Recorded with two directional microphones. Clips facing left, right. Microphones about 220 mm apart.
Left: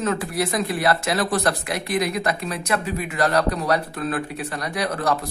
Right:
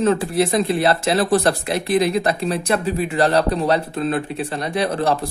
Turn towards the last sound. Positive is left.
turn(degrees=-25)  # may be behind; listen again after turning